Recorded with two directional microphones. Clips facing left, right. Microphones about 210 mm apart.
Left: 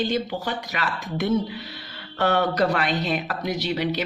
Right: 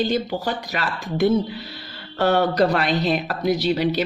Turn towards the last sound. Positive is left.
turn(degrees=-35)  # may be behind; listen again after turning